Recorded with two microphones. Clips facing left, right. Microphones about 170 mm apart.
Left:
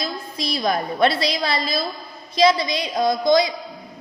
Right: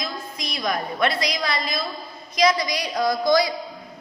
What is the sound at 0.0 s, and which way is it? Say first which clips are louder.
A woman's voice: left 4 dB; 35° left (ahead or behind).